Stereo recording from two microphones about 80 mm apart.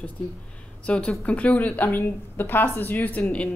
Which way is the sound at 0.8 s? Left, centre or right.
Centre.